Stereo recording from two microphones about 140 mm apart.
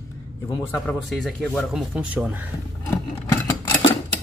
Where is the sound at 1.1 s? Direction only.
Centre (ahead or behind).